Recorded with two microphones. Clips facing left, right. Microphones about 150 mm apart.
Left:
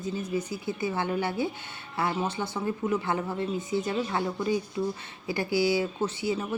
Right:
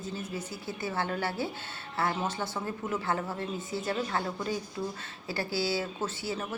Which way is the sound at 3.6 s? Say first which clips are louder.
Left 2 dB; 15° left (ahead or behind).